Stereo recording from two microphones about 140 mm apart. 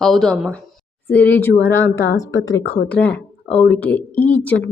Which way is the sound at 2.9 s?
10° left (ahead or behind).